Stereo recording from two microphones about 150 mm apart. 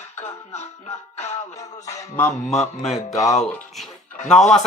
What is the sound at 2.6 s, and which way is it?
Music, 45° left (ahead or behind).